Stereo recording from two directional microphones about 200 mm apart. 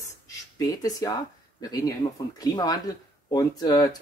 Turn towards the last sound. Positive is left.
turn(degrees=20)  # may be behind; listen again after turning